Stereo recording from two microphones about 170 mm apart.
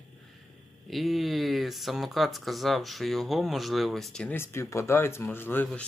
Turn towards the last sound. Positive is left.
turn(degrees=10)  # may be behind; listen again after turning